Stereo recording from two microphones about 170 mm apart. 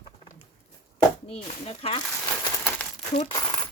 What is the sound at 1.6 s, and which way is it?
Speech, 35° left (ahead or behind).